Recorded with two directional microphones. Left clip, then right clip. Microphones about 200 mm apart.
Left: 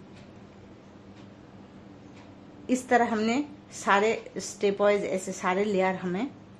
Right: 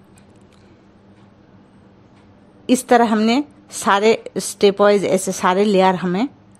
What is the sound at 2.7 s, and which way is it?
A woman's voice, 50° right (ahead or behind).